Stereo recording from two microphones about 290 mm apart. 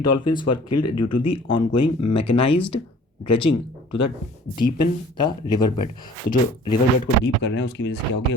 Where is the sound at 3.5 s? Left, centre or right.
Left.